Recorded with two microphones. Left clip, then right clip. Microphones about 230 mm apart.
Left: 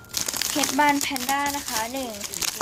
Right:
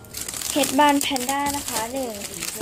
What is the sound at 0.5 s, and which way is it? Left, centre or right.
Speech, centre.